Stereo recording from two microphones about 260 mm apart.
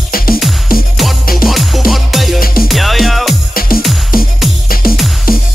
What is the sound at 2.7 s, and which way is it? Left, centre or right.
Music, centre.